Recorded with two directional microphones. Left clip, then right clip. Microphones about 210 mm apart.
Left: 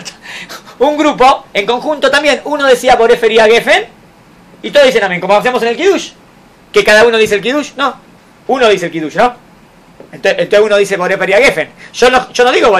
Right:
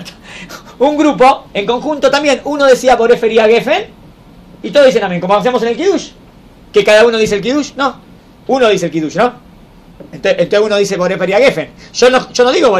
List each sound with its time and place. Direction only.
0.0 s a man's voice: 15° left (ahead or behind)
4.9 s speech: 15° left (ahead or behind)
6.7 s a man's voice: 15° left (ahead or behind)